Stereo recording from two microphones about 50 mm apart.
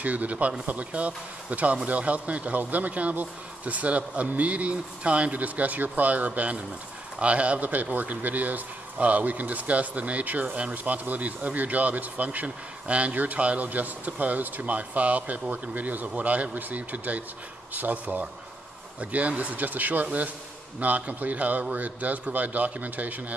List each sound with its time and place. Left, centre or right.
0.0 s speech: right